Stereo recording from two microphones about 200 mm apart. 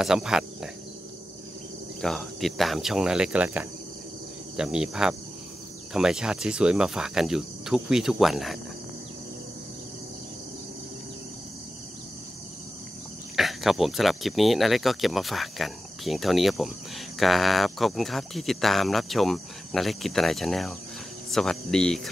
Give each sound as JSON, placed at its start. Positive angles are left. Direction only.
{"t": 0.0, "sound": "speech", "side_deg": -5}
{"t": 2.0, "sound": "speech", "side_deg": 0}
{"t": 13.4, "sound": "speech", "side_deg": 0}